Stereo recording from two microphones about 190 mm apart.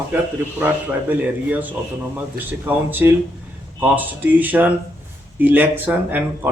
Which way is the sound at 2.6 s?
10° right (ahead or behind).